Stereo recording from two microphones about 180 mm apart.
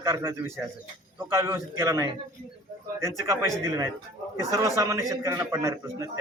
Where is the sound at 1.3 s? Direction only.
15° right (ahead or behind).